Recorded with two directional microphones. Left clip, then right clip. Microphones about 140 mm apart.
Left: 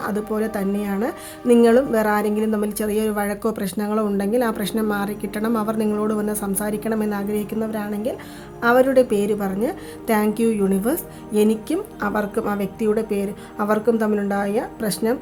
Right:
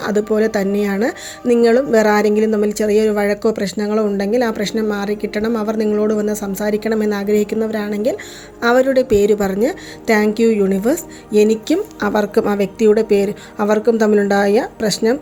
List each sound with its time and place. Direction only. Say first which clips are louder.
0.0 s a woman's voice: right 8 dB; 30° right (ahead or behind)